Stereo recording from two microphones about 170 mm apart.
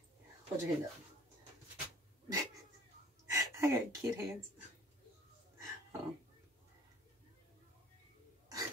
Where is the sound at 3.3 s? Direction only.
15° right (ahead or behind).